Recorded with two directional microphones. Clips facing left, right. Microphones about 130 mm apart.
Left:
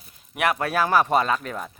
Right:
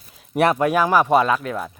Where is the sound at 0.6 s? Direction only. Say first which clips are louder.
Right 4 dB; 15° right (ahead or behind).